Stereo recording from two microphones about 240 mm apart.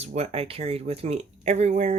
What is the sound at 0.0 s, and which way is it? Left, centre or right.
Speech, right.